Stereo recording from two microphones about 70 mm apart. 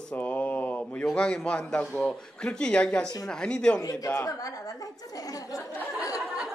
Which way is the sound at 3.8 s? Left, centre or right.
Left.